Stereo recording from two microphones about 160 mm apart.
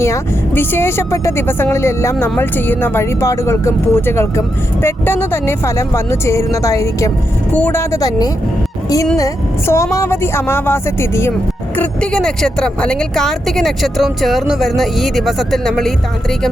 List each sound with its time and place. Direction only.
0.0 s speech: 15° left (ahead or behind)
11.8 s a woman's voice: 5° left (ahead or behind)